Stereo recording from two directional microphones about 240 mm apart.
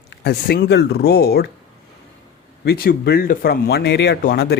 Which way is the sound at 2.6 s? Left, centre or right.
Left.